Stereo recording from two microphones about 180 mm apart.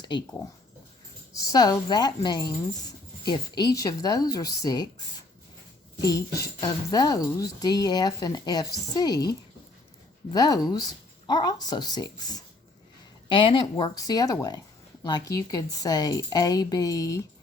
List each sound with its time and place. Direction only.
1.3 s speech: 20° left (ahead or behind)
6.0 s speech: 20° left (ahead or behind)
10.3 s speech: 20° left (ahead or behind)